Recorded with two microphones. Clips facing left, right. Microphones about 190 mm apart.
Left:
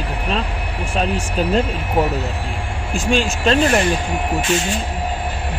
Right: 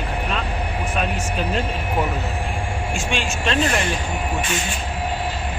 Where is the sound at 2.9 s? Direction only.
35° left (ahead or behind).